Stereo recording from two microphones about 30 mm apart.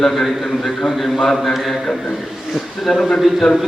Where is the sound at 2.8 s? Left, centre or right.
Centre.